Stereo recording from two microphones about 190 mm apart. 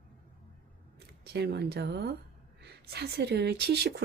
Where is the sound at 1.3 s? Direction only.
60° right (ahead or behind).